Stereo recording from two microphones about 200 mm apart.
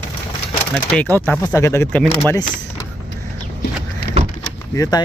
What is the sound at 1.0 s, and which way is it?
A man's voice, 10° left (ahead or behind).